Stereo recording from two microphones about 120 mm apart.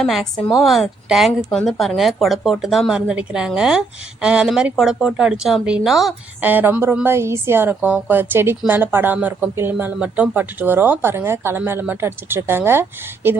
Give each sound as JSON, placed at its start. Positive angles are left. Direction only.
{"t": 0.0, "sound": "speech", "side_deg": 0}
{"t": 6.4, "sound": "a woman's voice", "side_deg": -15}